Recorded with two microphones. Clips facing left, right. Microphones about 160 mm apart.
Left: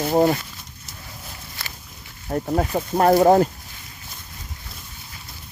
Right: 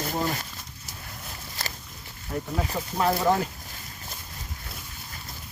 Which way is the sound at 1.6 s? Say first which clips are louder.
Right 3 dB; 40° right (ahead or behind).